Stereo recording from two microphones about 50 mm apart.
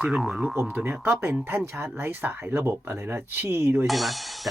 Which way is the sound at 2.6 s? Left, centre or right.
Right.